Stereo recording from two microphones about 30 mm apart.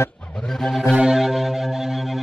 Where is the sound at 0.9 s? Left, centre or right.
Right.